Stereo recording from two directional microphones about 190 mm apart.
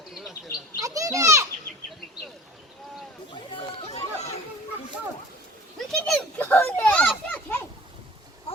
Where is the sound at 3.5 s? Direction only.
35° left (ahead or behind).